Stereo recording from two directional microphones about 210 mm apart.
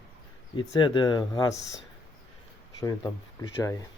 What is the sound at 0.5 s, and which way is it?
Speech, 20° left (ahead or behind).